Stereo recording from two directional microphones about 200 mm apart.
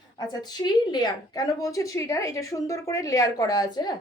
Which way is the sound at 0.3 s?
20° left (ahead or behind).